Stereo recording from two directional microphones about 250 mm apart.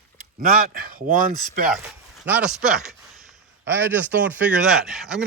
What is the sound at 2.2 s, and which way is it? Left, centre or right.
Speech, centre.